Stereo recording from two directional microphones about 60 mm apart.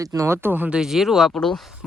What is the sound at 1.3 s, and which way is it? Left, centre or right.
Speech, centre.